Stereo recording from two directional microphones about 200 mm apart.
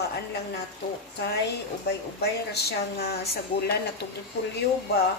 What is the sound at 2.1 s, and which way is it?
A woman's voice, 55° left (ahead or behind).